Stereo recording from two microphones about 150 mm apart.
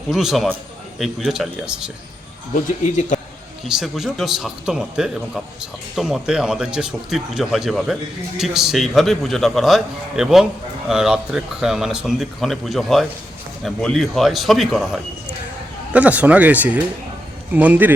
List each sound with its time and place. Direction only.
0.1 s a man's voice: 5° right (ahead or behind)
2.8 s a man's voice: 55° left (ahead or behind)
3.7 s a man's voice: 5° right (ahead or behind)